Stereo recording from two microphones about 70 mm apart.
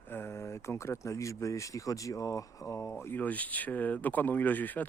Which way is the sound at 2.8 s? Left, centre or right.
Left.